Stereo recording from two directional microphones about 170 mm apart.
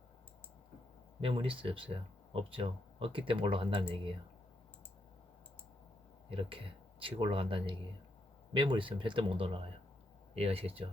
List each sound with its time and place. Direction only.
1.2 s speech: 30° right (ahead or behind)
6.3 s speech: 30° right (ahead or behind)